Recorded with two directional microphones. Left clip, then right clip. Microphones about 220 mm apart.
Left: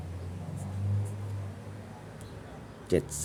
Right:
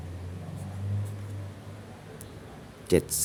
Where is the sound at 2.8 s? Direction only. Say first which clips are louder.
Right 4 dB; 25° right (ahead or behind).